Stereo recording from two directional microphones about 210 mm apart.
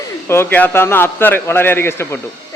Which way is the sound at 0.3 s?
10° left (ahead or behind).